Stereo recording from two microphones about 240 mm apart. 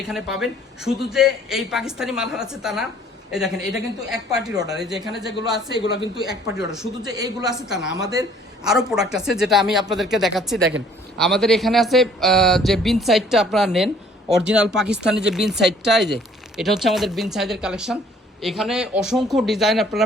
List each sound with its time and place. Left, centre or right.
0.1 s speech: centre
5.9 s speech: centre
8.6 s speech: centre
10.6 s speech: right
11.2 s speech: centre